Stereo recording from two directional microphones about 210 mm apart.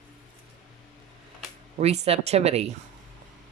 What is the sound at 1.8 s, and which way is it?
Speech, 30° right (ahead or behind).